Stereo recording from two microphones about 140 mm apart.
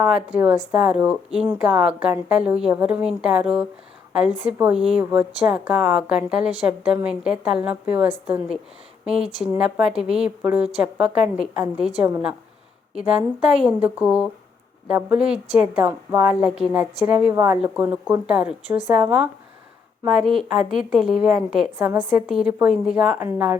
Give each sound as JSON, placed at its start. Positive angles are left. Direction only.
{"t": 0.0, "sound": "a woman's voice", "side_deg": -10}
{"t": 12.9, "sound": "a woman's voice", "side_deg": -5}